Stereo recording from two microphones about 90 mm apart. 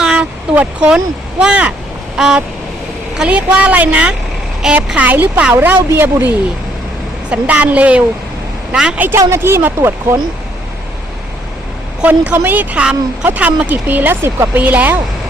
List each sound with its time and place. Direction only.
0.0 s speech: 10° right (ahead or behind)
2.1 s vehicle: 5° right (ahead or behind)
3.2 s a woman's voice: 15° right (ahead or behind)
7.3 s a woman's voice: 15° right (ahead or behind)
9.0 s speech: 25° right (ahead or behind)
12.0 s speech: 15° right (ahead or behind)